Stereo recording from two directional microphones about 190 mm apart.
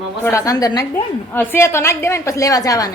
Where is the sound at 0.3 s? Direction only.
15° left (ahead or behind).